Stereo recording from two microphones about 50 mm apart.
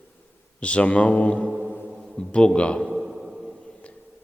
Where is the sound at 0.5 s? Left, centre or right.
Left.